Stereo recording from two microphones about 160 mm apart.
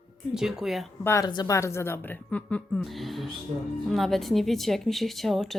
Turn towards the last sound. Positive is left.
turn(degrees=0)  # may be behind; listen again after turning